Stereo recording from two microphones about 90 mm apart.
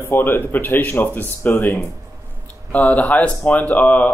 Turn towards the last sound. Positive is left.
turn(degrees=20)  # may be behind; listen again after turning